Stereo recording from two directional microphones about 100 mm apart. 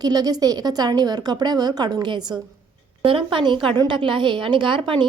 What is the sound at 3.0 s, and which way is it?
A woman's voice, 60° right (ahead or behind).